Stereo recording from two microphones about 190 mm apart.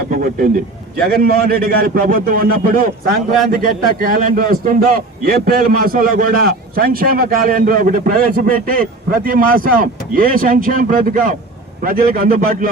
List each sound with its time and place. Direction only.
0.1 s a man's voice: 45° right (ahead or behind)